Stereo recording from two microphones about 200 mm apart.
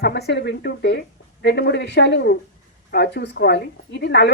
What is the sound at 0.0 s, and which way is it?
A woman's voice, 55° left (ahead or behind).